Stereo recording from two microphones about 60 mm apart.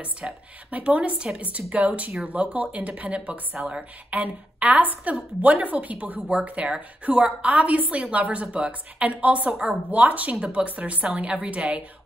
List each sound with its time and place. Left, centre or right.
0.2 s a woman's voice: right
9.8 s a woman's voice: right